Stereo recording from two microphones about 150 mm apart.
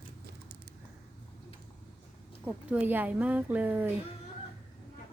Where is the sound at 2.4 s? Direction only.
10° right (ahead or behind).